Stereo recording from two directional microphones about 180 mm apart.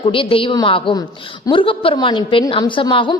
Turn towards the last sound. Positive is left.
turn(degrees=30)  # may be behind; listen again after turning